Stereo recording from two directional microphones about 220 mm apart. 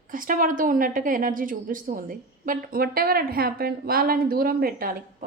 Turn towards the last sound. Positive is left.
turn(degrees=-40)  # may be behind; listen again after turning